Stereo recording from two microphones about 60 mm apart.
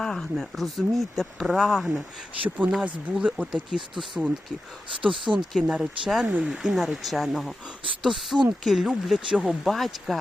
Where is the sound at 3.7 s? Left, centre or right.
Centre.